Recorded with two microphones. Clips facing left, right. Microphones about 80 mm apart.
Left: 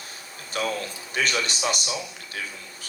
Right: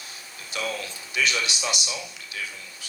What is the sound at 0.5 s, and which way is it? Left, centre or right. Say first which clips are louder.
Speech: left 3 dB; left.